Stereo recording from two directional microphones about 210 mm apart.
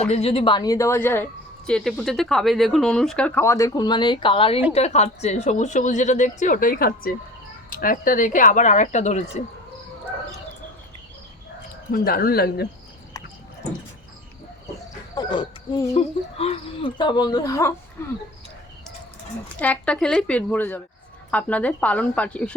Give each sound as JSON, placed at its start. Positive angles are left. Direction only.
{"t": 0.1, "sound": "a woman's voice", "side_deg": 30}
{"t": 11.9, "sound": "speech", "side_deg": 45}
{"t": 15.1, "sound": "a sound", "side_deg": 20}
{"t": 16.0, "sound": "speech", "side_deg": 30}
{"t": 19.5, "sound": "speech", "side_deg": 5}